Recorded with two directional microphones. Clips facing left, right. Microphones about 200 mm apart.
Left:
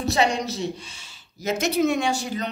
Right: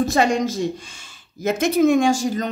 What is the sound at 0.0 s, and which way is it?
Speech, 50° right (ahead or behind).